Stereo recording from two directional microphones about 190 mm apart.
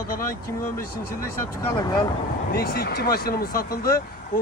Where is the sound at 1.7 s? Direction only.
25° left (ahead or behind).